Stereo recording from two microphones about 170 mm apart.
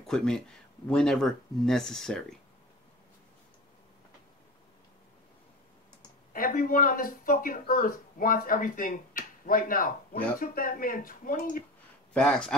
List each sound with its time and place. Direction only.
0.0 s speech: 5° left (ahead or behind)
6.3 s speech: 55° left (ahead or behind)
12.1 s speech: 5° left (ahead or behind)